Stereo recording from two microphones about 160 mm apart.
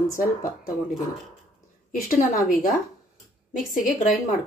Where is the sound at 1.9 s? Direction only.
55° left (ahead or behind).